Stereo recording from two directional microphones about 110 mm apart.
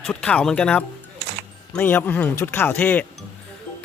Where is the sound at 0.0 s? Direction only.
10° left (ahead or behind).